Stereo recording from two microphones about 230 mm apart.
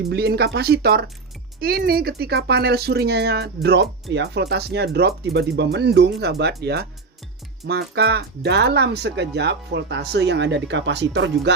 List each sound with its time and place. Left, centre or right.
0.0 s speech: right